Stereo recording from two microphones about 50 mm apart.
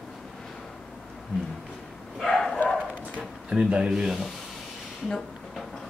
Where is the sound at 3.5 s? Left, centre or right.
Centre.